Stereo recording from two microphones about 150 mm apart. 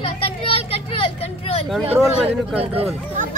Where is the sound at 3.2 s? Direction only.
55° right (ahead or behind).